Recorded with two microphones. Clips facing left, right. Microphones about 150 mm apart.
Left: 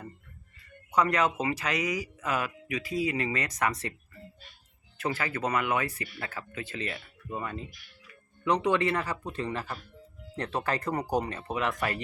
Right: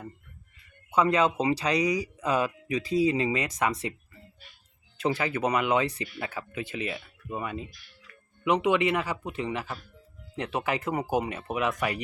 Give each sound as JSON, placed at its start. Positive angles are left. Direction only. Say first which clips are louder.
{"t": 0.9, "sound": "speech", "louder": "right 3 dB", "side_deg": -25}
{"t": 3.2, "sound": "speech", "louder": "right 3 dB", "side_deg": -15}